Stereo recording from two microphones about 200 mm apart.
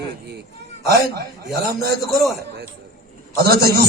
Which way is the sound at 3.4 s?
50° right (ahead or behind).